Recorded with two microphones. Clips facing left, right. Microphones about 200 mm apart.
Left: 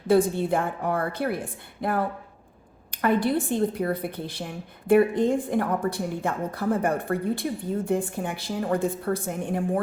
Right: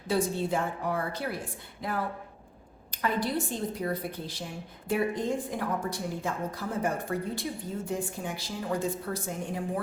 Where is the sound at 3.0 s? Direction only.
55° left (ahead or behind).